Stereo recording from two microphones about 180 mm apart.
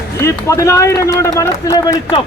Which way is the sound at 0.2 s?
15° left (ahead or behind).